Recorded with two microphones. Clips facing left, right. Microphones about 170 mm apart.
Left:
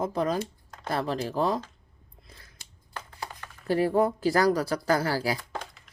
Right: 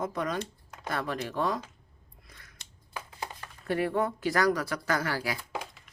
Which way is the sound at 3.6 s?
30° left (ahead or behind).